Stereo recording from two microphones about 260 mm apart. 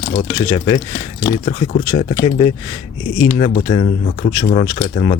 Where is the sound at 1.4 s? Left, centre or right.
Left.